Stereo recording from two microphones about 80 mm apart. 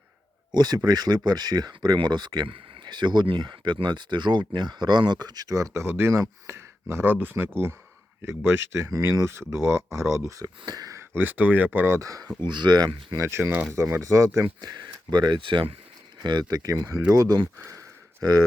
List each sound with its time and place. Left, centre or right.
0.5 s speech: right
10.9 s speech: right
11.9 s speech: right
12.4 s speech: right
13.1 s speech: right
15.1 s speech: right
16.2 s speech: right
17.7 s a sound: right